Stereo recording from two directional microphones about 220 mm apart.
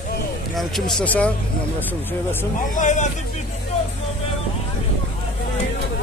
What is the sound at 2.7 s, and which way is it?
Speech, 35° left (ahead or behind).